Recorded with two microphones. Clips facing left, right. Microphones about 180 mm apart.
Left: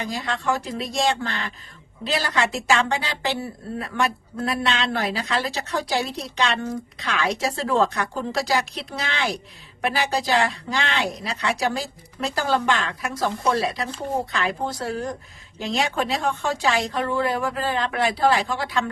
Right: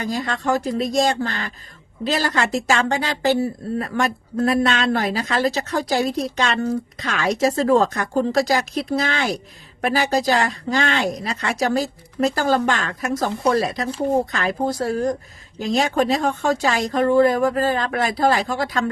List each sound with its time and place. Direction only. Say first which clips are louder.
0.0 s speech: right 3 dB; 45° right (ahead or behind)